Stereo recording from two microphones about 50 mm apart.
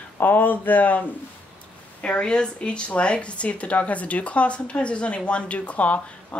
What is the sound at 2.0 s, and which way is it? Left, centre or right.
Speech, left.